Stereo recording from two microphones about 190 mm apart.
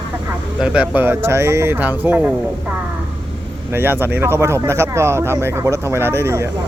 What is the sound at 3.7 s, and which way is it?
Speech, 10° right (ahead or behind).